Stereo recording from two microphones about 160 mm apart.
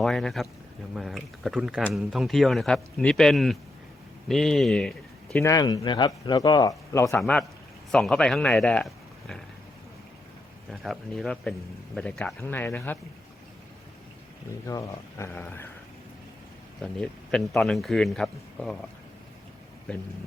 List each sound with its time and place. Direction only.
0.0 s speech: centre (ahead or behind)
5.4 s speech: 20° left (ahead or behind)
7.2 s a man's voice: 5° left (ahead or behind)
10.7 s speech: centre (ahead or behind)
14.7 s speech: 20° left (ahead or behind)
16.8 s speech: 5° left (ahead or behind)